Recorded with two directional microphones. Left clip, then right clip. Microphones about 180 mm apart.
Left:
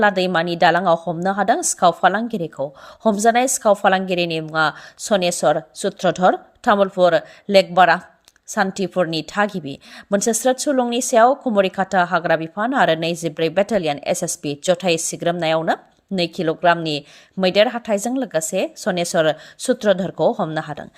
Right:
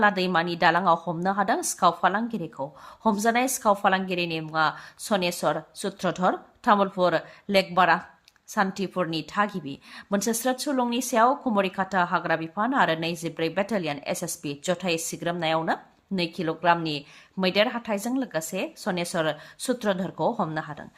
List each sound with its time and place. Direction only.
0.0 s a woman's voice: 30° left (ahead or behind)